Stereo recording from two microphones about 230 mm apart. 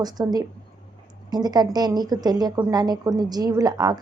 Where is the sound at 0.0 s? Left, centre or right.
Centre.